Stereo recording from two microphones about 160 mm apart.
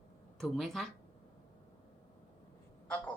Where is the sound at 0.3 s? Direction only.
Centre (ahead or behind).